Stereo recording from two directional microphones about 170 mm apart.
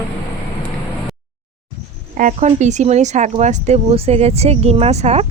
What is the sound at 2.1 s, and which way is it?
Speech, 45° right (ahead or behind).